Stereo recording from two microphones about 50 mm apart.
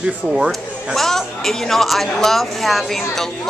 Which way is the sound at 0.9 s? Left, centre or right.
Centre.